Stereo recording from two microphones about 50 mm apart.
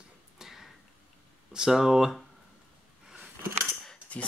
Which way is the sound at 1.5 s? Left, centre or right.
Centre.